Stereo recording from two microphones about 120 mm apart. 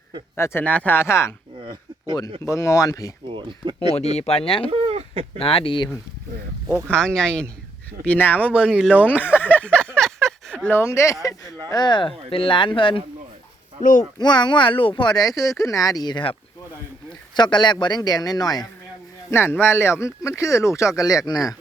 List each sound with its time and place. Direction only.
0.3 s speech: 20° left (ahead or behind)
0.6 s speech: 10° left (ahead or behind)
2.4 s speech: 25° left (ahead or behind)
3.2 s speech: 40° right (ahead or behind)
3.9 s speech: 60° left (ahead or behind)
4.7 s a sound: 55° right (ahead or behind)
5.4 s speech: 50° left (ahead or behind)
6.7 s speech: 15° right (ahead or behind)
6.9 s speech: 5° left (ahead or behind)
8.4 s speech: 10° right (ahead or behind)
9.4 s a sound: 15° left (ahead or behind)
10.8 s speech: 25° left (ahead or behind); by 13.0 s 45° left (ahead or behind)
14.2 s speech: 40° left (ahead or behind)
19.3 s speech: 20° left (ahead or behind)